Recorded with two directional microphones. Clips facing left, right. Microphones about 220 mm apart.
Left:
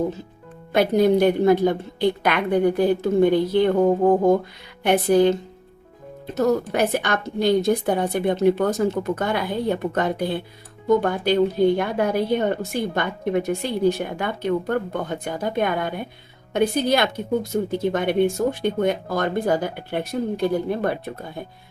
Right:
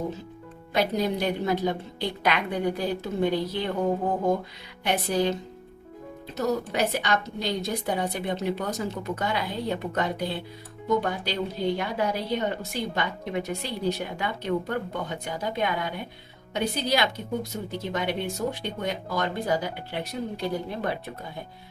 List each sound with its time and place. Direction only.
0.7 s a woman's voice: 55° left (ahead or behind)
4.8 s a woman's voice: 55° left (ahead or behind)
6.3 s a woman's voice: 50° left (ahead or behind)